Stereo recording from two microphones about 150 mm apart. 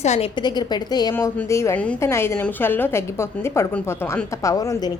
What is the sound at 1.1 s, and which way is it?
A woman's voice, 15° left (ahead or behind).